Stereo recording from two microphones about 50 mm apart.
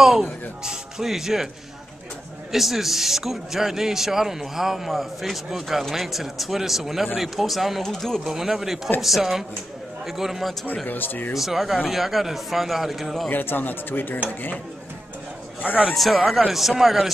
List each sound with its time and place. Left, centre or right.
0.0 s speech: centre
2.5 s a man's voice: centre
8.2 s a man's voice: centre
10.9 s speech: left
11.3 s a man's voice: centre
13.3 s speech: left
15.9 s a man's voice: centre